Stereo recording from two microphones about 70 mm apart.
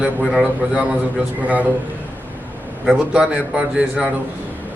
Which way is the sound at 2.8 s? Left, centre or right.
Centre.